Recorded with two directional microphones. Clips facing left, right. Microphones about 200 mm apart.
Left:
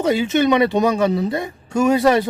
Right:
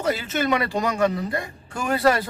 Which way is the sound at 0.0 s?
20° left (ahead or behind).